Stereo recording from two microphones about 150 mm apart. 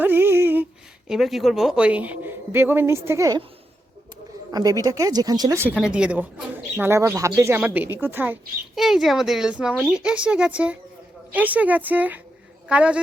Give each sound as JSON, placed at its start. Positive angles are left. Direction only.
{"t": 0.0, "sound": "speech", "side_deg": -15}
{"t": 4.5, "sound": "speech", "side_deg": -25}
{"t": 5.7, "sound": "speech", "side_deg": -5}
{"t": 8.7, "sound": "a man's voice", "side_deg": 0}